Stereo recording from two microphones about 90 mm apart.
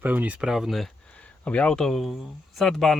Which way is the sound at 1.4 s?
15° left (ahead or behind).